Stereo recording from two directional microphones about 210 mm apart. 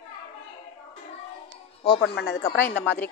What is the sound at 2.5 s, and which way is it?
Speech, 10° left (ahead or behind).